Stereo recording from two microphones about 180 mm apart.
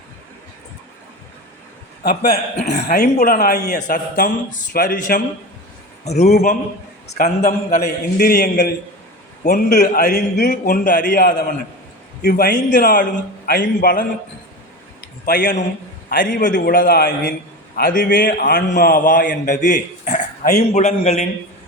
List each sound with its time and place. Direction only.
2.0 s a man's voice: 60° left (ahead or behind)
3.2 s a man's voice: 50° left (ahead or behind)
6.1 s a man's voice: 35° left (ahead or behind)
7.8 s a man's voice: 55° left (ahead or behind)
9.4 s a man's voice: 50° left (ahead or behind)
15.3 s a man's voice: 70° left (ahead or behind)
16.0 s a man's voice: 50° left (ahead or behind)